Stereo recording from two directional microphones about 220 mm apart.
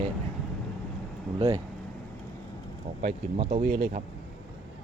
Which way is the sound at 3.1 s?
25° right (ahead or behind).